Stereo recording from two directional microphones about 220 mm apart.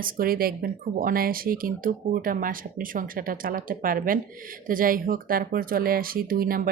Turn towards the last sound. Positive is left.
turn(degrees=-40)  # may be behind; listen again after turning